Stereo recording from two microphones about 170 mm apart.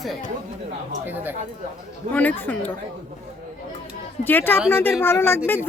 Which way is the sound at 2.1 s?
10° left (ahead or behind).